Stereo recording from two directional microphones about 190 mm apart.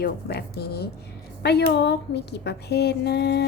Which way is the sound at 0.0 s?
55° left (ahead or behind).